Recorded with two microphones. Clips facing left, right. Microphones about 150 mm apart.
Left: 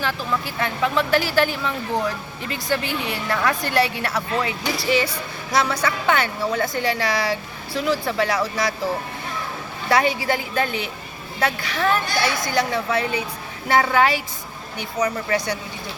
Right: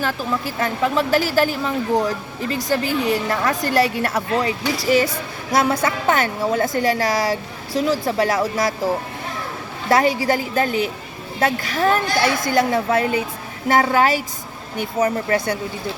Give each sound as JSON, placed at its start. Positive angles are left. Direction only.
{"t": 0.0, "sound": "a woman's voice", "side_deg": -40}
{"t": 9.9, "sound": "a woman's voice", "side_deg": -40}